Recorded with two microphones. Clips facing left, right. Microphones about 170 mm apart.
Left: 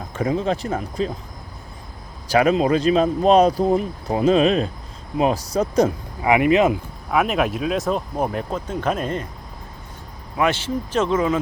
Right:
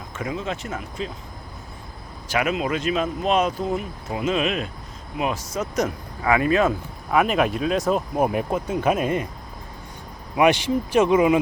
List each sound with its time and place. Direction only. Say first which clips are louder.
0.1 s speech: left 7 dB; 35° left (ahead or behind)
2.2 s speech: left 7 dB; 35° left (ahead or behind)
6.2 s speech: left 3 dB; 20° left (ahead or behind)
7.1 s speech: even; centre (ahead or behind)
10.3 s speech: right 3 dB; 15° right (ahead or behind)